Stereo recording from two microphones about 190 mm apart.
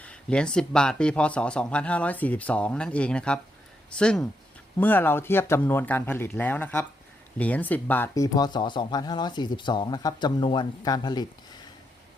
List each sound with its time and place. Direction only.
0.0 s speech: 5° left (ahead or behind); by 11.3 s 20° left (ahead or behind)